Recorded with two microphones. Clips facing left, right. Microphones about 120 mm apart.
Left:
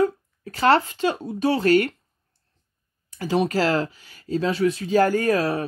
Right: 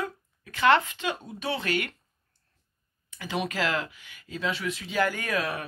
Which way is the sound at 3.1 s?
35° left (ahead or behind).